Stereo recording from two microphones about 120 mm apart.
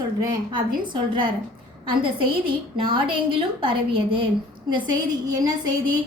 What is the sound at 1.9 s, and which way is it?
A woman's voice, 45° right (ahead or behind).